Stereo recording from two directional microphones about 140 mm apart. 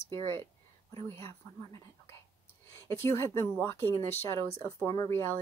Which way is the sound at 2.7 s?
20° left (ahead or behind).